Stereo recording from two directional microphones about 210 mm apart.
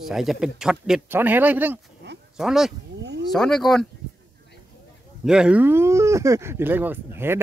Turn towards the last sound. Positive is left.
turn(degrees=-10)  # may be behind; listen again after turning